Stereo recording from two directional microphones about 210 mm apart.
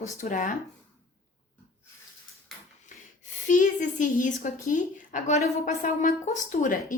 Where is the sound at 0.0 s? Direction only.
35° left (ahead or behind).